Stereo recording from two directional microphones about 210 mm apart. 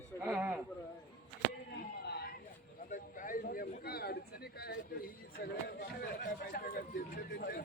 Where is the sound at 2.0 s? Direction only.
50° left (ahead or behind).